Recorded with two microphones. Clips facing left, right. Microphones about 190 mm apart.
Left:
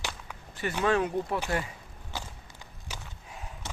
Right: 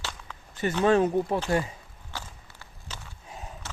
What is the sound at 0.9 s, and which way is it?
Speech, 30° right (ahead or behind).